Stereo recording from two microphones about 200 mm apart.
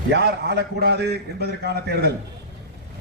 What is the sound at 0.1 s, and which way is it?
A man's voice, 55° right (ahead or behind).